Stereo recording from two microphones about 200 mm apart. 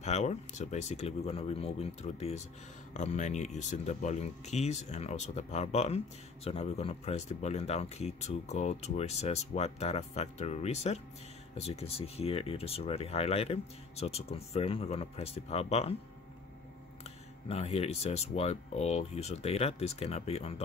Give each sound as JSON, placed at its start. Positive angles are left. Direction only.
{"t": 0.0, "sound": "speech", "side_deg": 35}
{"t": 17.5, "sound": "speech", "side_deg": 30}